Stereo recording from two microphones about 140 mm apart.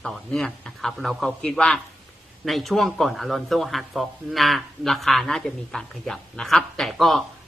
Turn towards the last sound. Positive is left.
turn(degrees=0)  # may be behind; listen again after turning